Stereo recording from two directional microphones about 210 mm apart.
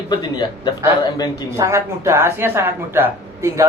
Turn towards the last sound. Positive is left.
turn(degrees=-10)  # may be behind; listen again after turning